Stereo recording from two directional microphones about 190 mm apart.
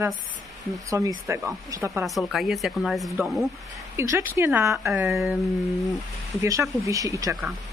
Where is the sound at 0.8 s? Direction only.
15° right (ahead or behind).